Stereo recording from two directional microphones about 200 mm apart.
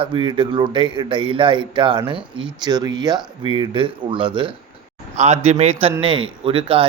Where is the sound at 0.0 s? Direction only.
25° right (ahead or behind).